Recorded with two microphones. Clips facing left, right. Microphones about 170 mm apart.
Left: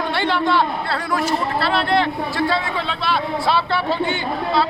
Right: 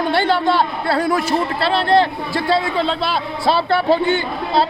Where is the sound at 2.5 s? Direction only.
35° right (ahead or behind).